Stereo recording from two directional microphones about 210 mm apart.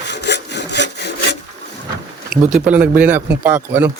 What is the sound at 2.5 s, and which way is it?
Speech, 5° right (ahead or behind).